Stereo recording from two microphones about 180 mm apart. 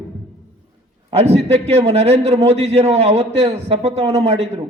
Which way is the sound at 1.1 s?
35° right (ahead or behind).